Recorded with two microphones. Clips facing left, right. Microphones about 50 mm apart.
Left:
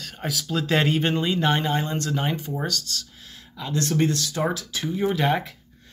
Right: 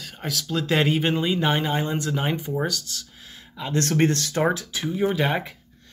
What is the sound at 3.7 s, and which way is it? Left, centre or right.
Speech, right.